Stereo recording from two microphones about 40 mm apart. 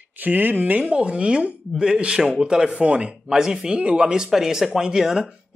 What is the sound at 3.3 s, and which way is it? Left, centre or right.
Speech, centre.